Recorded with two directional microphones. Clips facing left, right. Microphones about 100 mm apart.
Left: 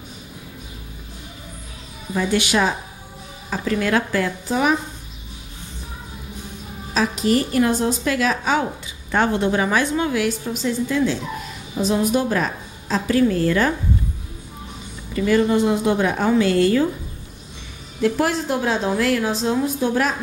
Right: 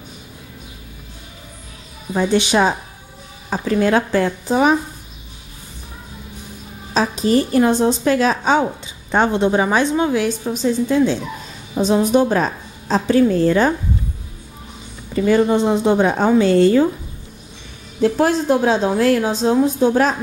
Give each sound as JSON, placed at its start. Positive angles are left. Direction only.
{"t": 2.1, "sound": "a woman's voice", "side_deg": -30}
{"t": 6.9, "sound": "a woman's voice", "side_deg": -30}
{"t": 13.4, "sound": "a woman's voice", "side_deg": -25}
{"t": 15.1, "sound": "a woman's voice", "side_deg": -30}
{"t": 18.0, "sound": "a woman's voice", "side_deg": -25}